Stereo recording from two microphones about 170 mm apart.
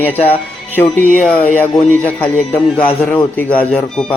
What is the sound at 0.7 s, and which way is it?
Speech, 10° left (ahead or behind).